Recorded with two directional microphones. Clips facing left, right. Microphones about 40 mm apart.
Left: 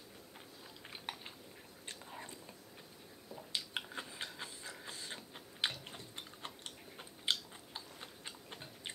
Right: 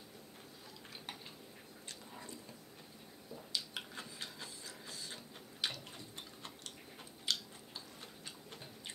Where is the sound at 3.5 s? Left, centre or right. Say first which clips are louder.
Left 2 dB; left.